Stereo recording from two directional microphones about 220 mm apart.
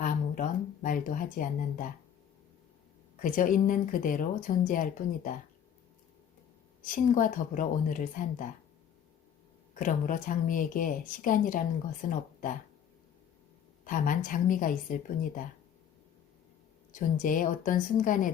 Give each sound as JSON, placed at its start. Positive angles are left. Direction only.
{"t": 0.0, "sound": "a sound", "side_deg": 35}
{"t": 3.2, "sound": "speech", "side_deg": 40}
{"t": 6.8, "sound": "speech", "side_deg": 40}
{"t": 9.7, "sound": "speech", "side_deg": 35}
{"t": 13.8, "sound": "speech", "side_deg": 40}
{"t": 16.9, "sound": "speech", "side_deg": 40}